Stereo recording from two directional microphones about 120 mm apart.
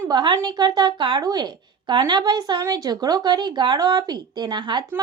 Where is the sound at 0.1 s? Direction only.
40° right (ahead or behind).